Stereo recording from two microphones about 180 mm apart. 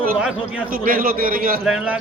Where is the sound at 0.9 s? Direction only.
50° right (ahead or behind).